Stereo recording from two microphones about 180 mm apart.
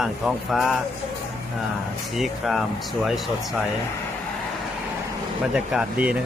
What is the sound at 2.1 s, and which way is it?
Speech, centre (ahead or behind).